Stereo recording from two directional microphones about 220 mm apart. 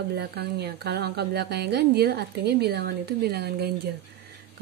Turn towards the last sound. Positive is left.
turn(degrees=-45)  # may be behind; listen again after turning